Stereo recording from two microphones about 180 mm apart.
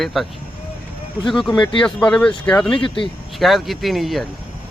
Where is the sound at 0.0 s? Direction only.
Centre (ahead or behind).